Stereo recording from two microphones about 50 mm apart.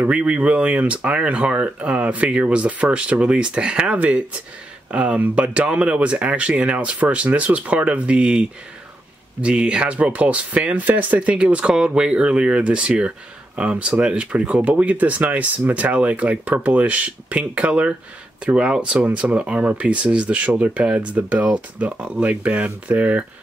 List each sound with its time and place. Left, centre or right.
0.0 s speech: right
18.9 s speech: right
19.3 s speech: right